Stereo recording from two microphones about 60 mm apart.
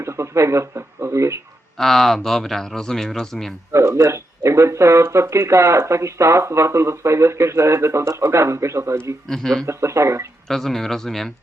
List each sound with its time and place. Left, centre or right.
0.0 s speech: right
1.8 s speech: centre
3.7 s speech: right
9.2 s speech: centre
9.6 s speech: right
10.5 s speech: centre